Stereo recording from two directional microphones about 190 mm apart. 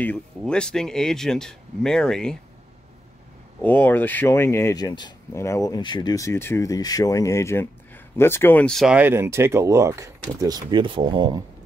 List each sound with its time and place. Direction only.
0.4 s speech: 5° left (ahead or behind)
3.6 s speech: 10° left (ahead or behind); by 11.4 s 25° right (ahead or behind)